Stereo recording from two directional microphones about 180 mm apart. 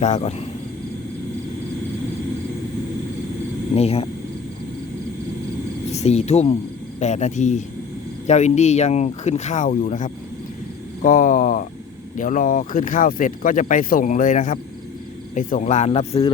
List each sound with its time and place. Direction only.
0.0 s speech: 35° left (ahead or behind)
3.8 s speech: 35° left (ahead or behind)
5.9 s speech: 35° left (ahead or behind)